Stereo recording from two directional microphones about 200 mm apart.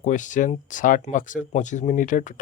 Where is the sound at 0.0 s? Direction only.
40° left (ahead or behind).